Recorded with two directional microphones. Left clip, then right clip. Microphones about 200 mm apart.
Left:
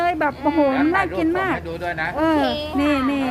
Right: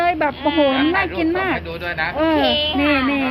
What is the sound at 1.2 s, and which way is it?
Speech, 10° left (ahead or behind).